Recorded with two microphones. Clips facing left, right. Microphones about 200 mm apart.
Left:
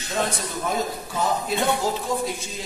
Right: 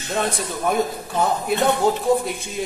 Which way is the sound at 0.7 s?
60° right (ahead or behind).